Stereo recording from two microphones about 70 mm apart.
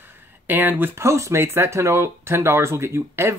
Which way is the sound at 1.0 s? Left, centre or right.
Right.